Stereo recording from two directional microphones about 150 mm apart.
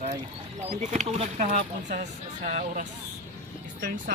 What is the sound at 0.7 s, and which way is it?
Speech, 45° right (ahead or behind).